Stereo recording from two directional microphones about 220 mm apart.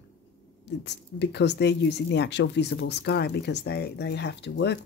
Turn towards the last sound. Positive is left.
turn(degrees=50)  # may be behind; listen again after turning